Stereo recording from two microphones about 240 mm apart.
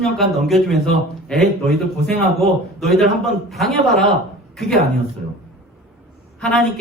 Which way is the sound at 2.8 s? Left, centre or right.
Centre.